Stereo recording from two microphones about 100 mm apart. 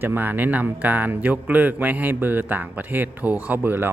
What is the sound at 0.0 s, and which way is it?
A man's voice, 20° right (ahead or behind).